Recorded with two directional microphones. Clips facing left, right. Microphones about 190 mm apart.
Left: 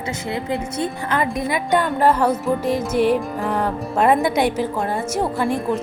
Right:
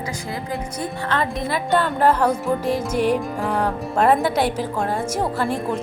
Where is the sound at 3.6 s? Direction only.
5° left (ahead or behind).